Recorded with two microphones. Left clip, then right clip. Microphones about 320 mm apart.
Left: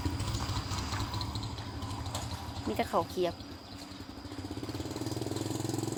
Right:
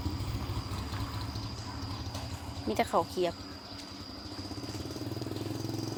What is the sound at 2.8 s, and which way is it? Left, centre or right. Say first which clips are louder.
Speech: right 2 dB; centre.